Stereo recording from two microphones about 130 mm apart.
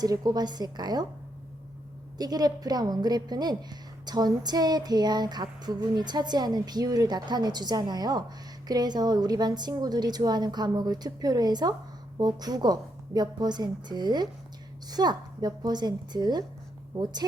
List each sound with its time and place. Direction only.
0.0 s a woman's voice: 30° right (ahead or behind)
2.1 s a woman's voice: 30° right (ahead or behind)